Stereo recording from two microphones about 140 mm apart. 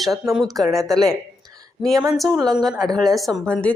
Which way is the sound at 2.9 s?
Centre (ahead or behind).